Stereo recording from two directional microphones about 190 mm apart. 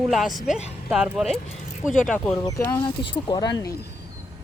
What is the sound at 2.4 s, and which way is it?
Speech, 15° left (ahead or behind).